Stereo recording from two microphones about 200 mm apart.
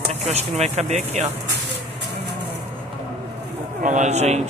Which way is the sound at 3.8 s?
35° right (ahead or behind).